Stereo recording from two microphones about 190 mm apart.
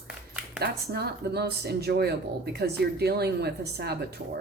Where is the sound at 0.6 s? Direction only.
60° right (ahead or behind).